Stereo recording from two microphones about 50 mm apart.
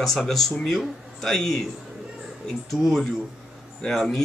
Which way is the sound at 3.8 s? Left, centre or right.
Centre.